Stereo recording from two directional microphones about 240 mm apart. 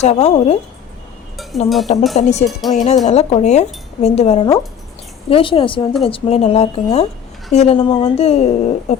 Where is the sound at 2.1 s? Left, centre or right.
Left.